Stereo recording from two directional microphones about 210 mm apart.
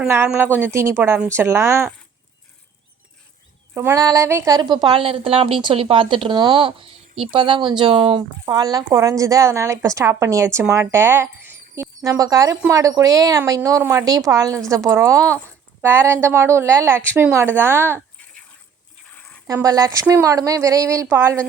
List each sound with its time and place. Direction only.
0.0 s a woman's voice: 10° right (ahead or behind)
3.8 s a woman's voice: 15° right (ahead or behind)
19.1 s a sound: 5° left (ahead or behind)
19.5 s a woman's voice: 15° right (ahead or behind)